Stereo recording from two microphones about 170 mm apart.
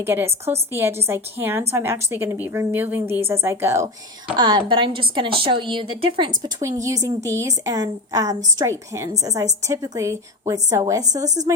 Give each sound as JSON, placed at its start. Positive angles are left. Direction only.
{"t": 0.0, "sound": "a woman's voice", "side_deg": -15}